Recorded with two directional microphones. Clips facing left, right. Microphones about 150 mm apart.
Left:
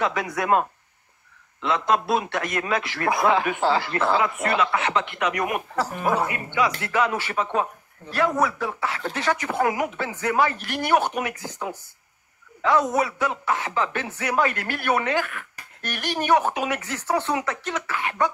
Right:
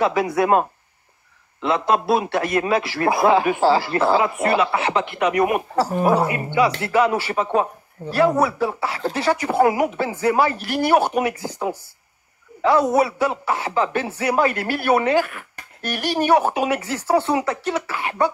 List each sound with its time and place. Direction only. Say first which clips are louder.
0.0 s a man's voice: right 6 dB; 30° right (ahead or behind)